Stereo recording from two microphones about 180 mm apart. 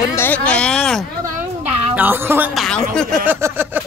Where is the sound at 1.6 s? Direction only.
10° right (ahead or behind).